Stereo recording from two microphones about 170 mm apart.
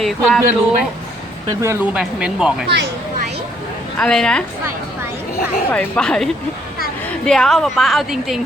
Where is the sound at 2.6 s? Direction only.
90° right.